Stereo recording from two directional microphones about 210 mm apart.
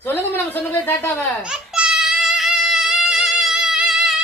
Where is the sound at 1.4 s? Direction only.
5° right (ahead or behind).